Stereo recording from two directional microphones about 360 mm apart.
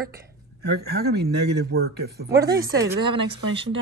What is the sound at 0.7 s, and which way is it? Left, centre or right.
A man's voice, right.